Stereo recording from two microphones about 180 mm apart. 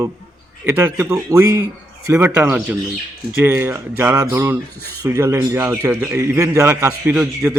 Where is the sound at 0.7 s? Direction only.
10° right (ahead or behind).